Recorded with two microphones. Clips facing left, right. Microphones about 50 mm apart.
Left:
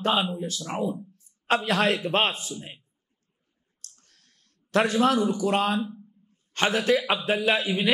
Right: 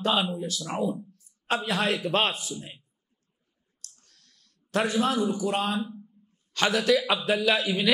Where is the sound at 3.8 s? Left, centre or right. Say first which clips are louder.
Even; left.